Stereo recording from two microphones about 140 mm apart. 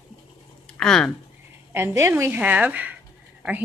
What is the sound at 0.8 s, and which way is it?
Speech, 5° left (ahead or behind).